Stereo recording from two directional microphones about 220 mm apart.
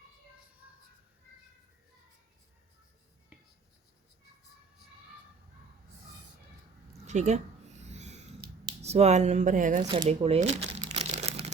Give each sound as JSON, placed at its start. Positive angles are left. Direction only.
{"t": 7.1, "sound": "speech", "side_deg": -30}
{"t": 7.9, "sound": "snort", "side_deg": -30}
{"t": 8.8, "sound": "speech", "side_deg": -30}
{"t": 9.8, "sound": "speech", "side_deg": -15}
{"t": 10.1, "sound": "crumpling", "side_deg": -30}